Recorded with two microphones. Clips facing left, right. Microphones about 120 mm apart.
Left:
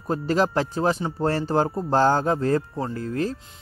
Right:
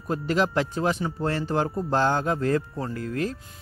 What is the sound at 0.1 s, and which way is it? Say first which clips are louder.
A man's voice: left 2 dB; 35° left (ahead or behind).